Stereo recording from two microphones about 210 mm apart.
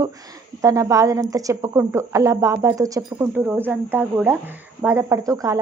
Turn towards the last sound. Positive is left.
turn(degrees=-15)  # may be behind; listen again after turning